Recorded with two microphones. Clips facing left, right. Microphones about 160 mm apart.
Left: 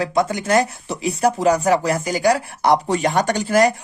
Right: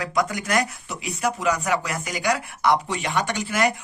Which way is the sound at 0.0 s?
30° left (ahead or behind).